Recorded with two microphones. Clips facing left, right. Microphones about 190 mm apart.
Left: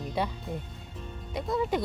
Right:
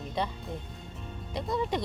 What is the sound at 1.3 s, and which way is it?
Speech, centre (ahead or behind).